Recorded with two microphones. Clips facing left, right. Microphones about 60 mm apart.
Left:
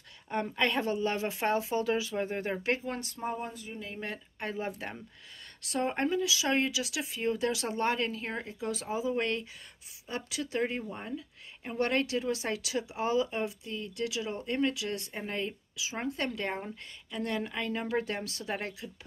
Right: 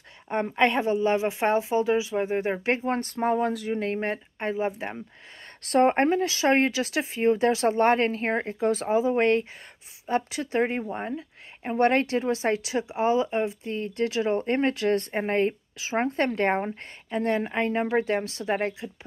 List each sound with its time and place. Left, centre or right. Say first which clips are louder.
0.3 s speech: right 7 dB; right
3.3 s speech: right 13 dB; right
4.0 s speech: right 9 dB; right
5.6 s speech: right 10 dB; right